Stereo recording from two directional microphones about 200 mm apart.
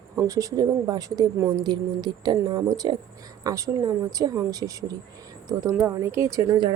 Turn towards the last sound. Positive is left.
turn(degrees=-20)  # may be behind; listen again after turning